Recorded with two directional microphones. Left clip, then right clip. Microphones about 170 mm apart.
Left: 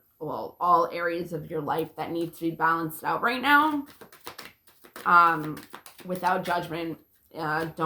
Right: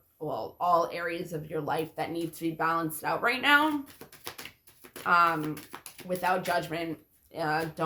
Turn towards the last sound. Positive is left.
turn(degrees=-20)  # may be behind; listen again after turning